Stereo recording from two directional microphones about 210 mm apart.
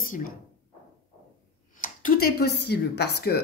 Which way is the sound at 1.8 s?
40° left (ahead or behind).